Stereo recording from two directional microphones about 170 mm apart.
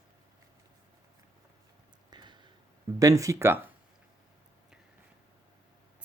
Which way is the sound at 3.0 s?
20° right (ahead or behind).